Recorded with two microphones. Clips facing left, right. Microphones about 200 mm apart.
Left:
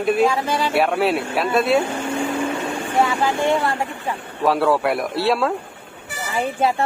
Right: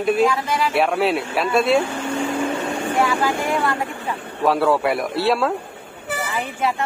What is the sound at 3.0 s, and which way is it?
Speech, 25° left (ahead or behind).